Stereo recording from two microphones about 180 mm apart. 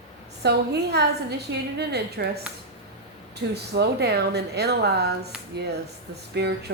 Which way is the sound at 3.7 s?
65° right (ahead or behind).